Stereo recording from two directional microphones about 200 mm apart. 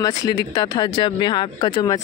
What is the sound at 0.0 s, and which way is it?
Speech, 20° left (ahead or behind).